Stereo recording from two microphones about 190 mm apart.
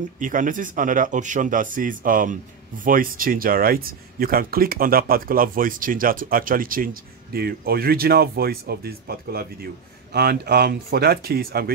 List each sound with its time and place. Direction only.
0.2 s speech: 45° right (ahead or behind)